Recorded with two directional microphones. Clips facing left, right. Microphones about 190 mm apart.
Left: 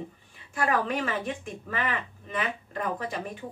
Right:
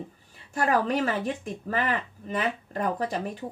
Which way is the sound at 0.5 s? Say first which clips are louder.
Right 3 dB; 40° right (ahead or behind).